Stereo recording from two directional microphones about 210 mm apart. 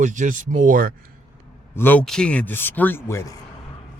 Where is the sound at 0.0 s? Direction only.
35° right (ahead or behind).